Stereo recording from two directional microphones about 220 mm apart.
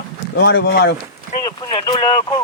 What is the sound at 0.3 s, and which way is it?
Speech, 45° left (ahead or behind).